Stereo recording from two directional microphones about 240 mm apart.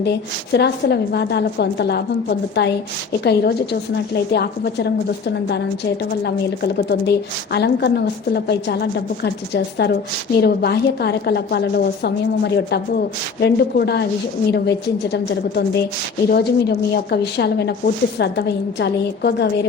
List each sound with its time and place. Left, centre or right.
0.0 s a woman's voice: left